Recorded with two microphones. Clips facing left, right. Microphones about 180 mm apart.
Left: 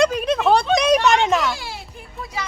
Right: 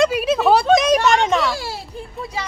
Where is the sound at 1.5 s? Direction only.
40° right (ahead or behind).